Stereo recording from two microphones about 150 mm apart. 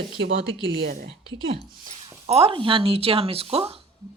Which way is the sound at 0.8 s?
80° right.